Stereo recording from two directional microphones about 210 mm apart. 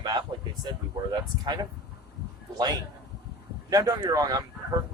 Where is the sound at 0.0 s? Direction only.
20° right (ahead or behind).